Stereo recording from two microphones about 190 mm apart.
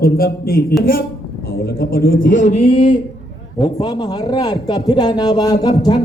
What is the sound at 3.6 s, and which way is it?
Speech, 20° left (ahead or behind).